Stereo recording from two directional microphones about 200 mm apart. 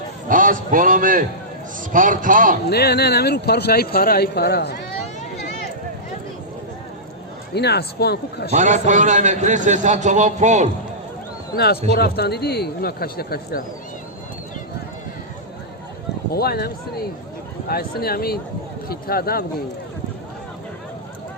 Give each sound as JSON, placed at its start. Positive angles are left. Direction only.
{"t": 0.3, "sound": "a man's voice", "side_deg": -40}
{"t": 2.6, "sound": "speech", "side_deg": 55}
{"t": 7.5, "sound": "speech", "side_deg": 55}
{"t": 8.5, "sound": "a man's voice", "side_deg": -40}
{"t": 11.5, "sound": "speech", "side_deg": 50}
{"t": 16.3, "sound": "speech", "side_deg": 50}